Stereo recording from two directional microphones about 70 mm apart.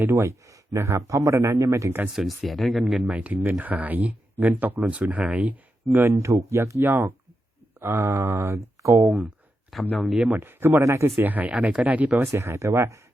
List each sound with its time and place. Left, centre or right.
0.0 s speech: right
2.1 s speech: centre
3.1 s speech: right
6.0 s speech: right
6.8 s speech: right
9.7 s speech: centre
10.3 s speech: right
10.8 s speech: right
11.2 s speech: right
12.1 s speech: right